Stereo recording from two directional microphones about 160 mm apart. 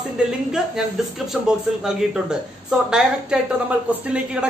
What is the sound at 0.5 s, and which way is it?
Speech, centre (ahead or behind).